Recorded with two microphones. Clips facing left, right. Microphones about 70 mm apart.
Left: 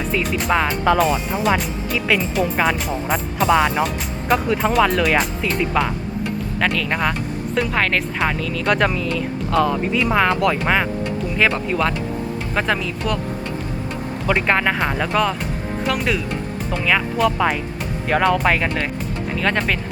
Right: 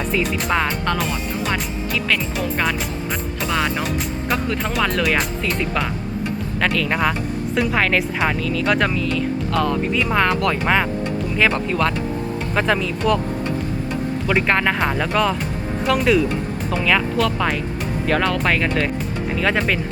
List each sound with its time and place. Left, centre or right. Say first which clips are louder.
0.1 s speech: left 2 dB; centre
14.3 s speech: left 1 dB; centre